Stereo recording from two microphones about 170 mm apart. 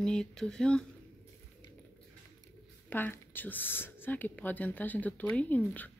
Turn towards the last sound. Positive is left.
turn(degrees=10)  # may be behind; listen again after turning